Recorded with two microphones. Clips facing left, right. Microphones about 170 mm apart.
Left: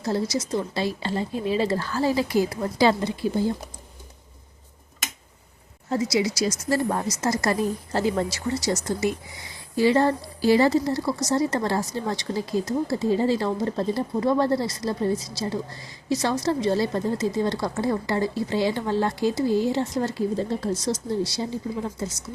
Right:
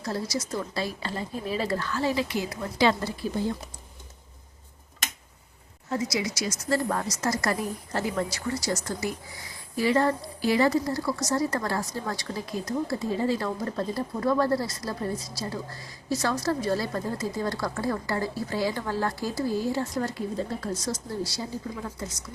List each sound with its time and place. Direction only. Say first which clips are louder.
0.0 s a woman's voice: left 5 dB; 25° left (ahead or behind)
5.9 s a woman's voice: left 5 dB; 30° left (ahead or behind)